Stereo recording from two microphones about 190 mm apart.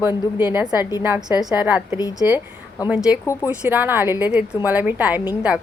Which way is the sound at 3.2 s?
15° left (ahead or behind).